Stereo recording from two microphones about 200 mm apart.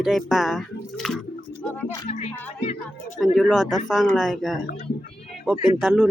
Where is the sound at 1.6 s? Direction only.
5° left (ahead or behind).